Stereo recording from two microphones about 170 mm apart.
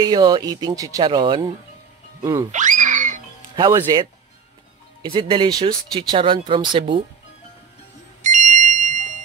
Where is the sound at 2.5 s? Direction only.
45° right (ahead or behind).